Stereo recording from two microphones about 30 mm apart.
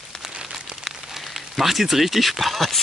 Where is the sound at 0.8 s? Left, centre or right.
Centre.